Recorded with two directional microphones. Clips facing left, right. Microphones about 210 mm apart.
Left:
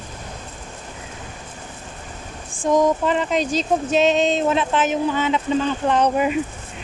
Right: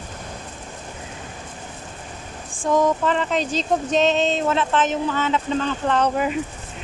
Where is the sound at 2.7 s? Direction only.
15° left (ahead or behind).